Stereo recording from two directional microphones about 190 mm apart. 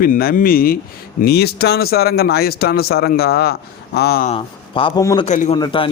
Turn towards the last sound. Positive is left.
turn(degrees=25)  # may be behind; listen again after turning